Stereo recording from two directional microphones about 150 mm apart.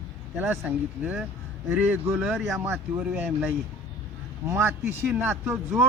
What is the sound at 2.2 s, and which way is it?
Speech, centre (ahead or behind).